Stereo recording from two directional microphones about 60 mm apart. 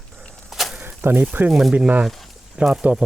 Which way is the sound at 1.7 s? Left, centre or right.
Right.